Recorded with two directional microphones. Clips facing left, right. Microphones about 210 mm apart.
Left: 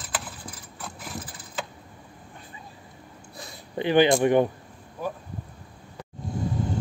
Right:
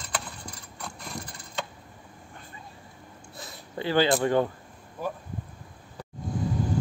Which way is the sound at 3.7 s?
20° left (ahead or behind).